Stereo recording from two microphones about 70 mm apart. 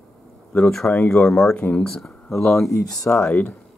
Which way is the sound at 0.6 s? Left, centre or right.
Centre.